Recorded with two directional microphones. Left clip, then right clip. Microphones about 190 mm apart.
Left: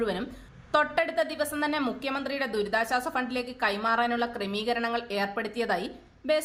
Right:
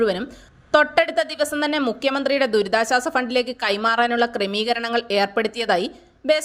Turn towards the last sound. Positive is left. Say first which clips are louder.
# right 8 dB
turn(degrees=-40)  # may be behind; listen again after turning